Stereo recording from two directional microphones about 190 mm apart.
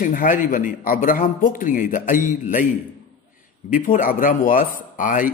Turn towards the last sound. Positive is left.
turn(degrees=45)  # may be behind; listen again after turning